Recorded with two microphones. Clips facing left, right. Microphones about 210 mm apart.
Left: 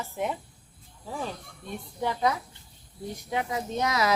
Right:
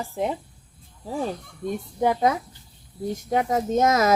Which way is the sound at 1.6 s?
50° right (ahead or behind).